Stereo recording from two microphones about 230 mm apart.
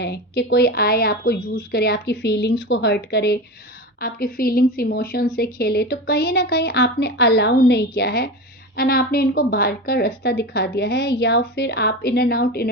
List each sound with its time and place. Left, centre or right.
0.0 s a woman's voice: left